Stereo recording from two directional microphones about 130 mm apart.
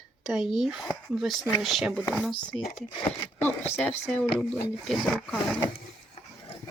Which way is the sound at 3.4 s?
15° left (ahead or behind).